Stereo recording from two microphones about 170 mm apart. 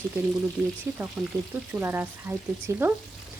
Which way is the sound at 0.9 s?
15° right (ahead or behind).